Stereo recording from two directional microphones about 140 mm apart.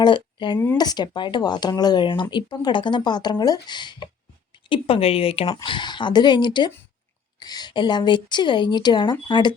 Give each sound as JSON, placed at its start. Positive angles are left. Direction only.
{"t": 0.0, "sound": "speech", "side_deg": 35}
{"t": 4.7, "sound": "speech", "side_deg": 45}
{"t": 5.6, "sound": "speech", "side_deg": 35}